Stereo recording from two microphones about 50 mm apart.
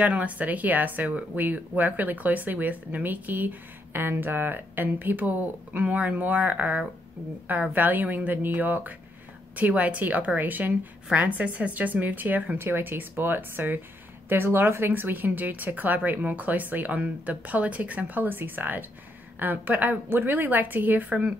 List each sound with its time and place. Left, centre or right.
0.0 s speech: right
12.5 s speech: right